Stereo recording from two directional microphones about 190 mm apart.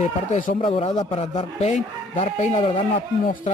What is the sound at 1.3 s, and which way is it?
Speech, 40° left (ahead or behind).